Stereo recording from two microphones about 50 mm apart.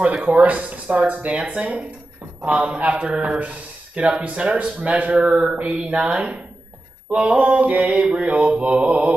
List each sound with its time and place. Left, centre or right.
0.0 s speech: right
5.4 s mantra: centre
7.1 s speech: right
8.4 s mantra: centre
8.6 s speech: right